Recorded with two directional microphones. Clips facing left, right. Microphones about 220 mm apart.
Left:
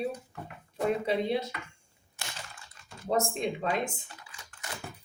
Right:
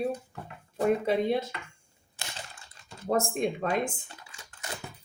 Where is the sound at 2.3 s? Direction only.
30° right (ahead or behind).